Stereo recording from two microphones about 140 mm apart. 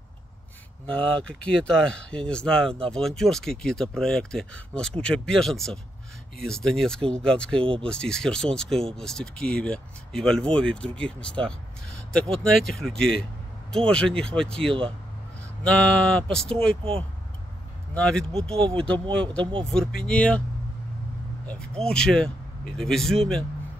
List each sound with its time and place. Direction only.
0.8 s speech: 10° left (ahead or behind)
17.9 s speech: 5° left (ahead or behind)
18.6 s speech: 40° right (ahead or behind)
19.6 s speech: 5° left (ahead or behind)
21.5 s speech: 5° left (ahead or behind)